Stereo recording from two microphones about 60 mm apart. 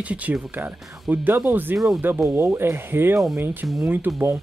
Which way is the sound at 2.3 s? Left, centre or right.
Right.